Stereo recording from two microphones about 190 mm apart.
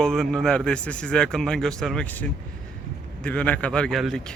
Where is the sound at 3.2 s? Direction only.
5° left (ahead or behind).